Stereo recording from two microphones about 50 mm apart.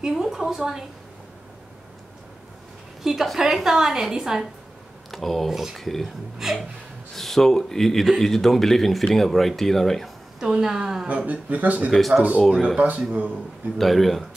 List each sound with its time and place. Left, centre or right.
0.0 s a woman's voice: centre
3.0 s a woman's voice: centre
5.1 s a man's voice: centre
5.9 s a man's voice: centre
6.3 s a woman's voice: centre
7.2 s a man's voice: centre
10.4 s a woman's voice: centre
11.1 s speech: right
11.9 s a man's voice: centre
12.7 s speech: right
13.7 s a man's voice: centre